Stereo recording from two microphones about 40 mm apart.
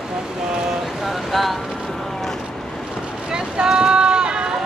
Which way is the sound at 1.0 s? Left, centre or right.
Centre.